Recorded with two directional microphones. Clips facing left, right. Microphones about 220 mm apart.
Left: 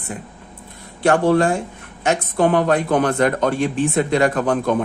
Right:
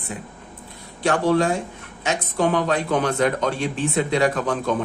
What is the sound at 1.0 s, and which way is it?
Speech, 55° left (ahead or behind).